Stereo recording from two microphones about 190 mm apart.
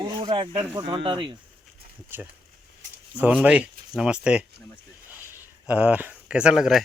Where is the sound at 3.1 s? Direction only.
10° right (ahead or behind).